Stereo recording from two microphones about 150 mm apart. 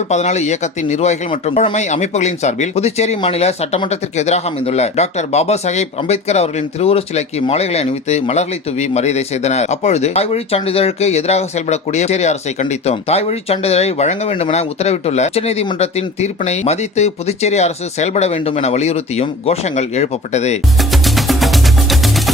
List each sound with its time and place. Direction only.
0.1 s speech: 50° left (ahead or behind)
20.7 s music: centre (ahead or behind)